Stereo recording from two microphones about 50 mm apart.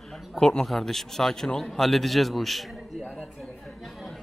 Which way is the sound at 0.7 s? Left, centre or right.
Centre.